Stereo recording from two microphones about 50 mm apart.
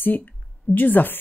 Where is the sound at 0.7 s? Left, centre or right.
Left.